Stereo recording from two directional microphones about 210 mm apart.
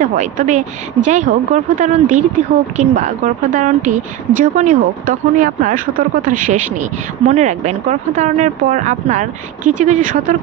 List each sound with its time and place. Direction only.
0.0 s a woman's voice: 40° right (ahead or behind)